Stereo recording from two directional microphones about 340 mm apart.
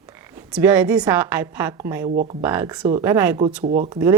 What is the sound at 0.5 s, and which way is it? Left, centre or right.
A woman's voice, centre.